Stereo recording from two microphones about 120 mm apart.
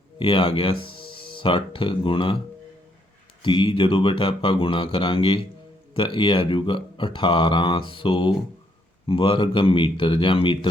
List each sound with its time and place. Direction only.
0.2 s speech: 50° left (ahead or behind)
3.4 s speech: 40° left (ahead or behind)